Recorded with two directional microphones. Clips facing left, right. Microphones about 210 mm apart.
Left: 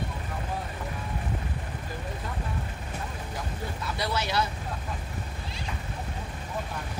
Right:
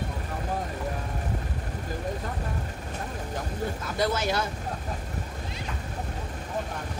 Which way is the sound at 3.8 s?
45° right (ahead or behind).